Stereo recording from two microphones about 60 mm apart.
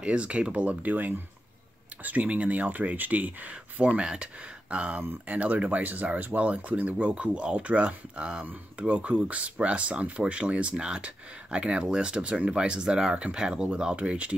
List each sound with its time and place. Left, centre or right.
0.0 s speech: centre
4.0 s speech: centre